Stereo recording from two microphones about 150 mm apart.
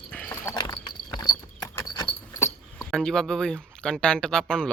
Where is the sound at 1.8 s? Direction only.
20° left (ahead or behind).